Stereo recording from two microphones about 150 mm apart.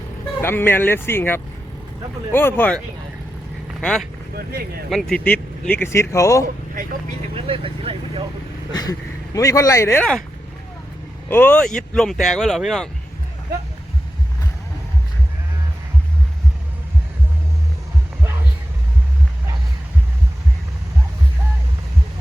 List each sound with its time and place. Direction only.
0.4 s speech: 15° left (ahead or behind)
4.4 s speech: 90° right
4.9 s speech: centre (ahead or behind); by 6.4 s 20° left (ahead or behind)
7.3 s speech: 40° right (ahead or behind)
8.7 s speech: 25° left (ahead or behind)
11.3 s speech: 15° left (ahead or behind)